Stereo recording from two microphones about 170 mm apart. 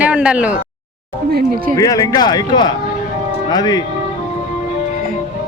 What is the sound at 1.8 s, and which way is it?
Speech, 20° left (ahead or behind).